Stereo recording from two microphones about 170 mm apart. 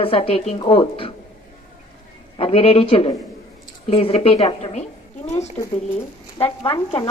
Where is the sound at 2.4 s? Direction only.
35° left (ahead or behind).